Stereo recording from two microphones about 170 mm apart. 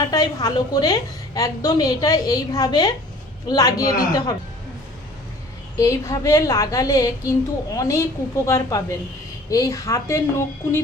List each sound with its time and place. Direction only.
0.0 s a woman's voice: 25° left (ahead or behind)
5.7 s a woman's voice: 20° left (ahead or behind)